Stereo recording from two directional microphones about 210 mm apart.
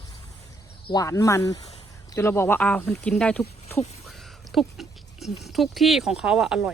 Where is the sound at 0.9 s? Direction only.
15° left (ahead or behind).